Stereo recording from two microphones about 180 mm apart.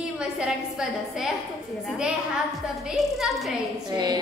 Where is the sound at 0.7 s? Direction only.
Centre (ahead or behind).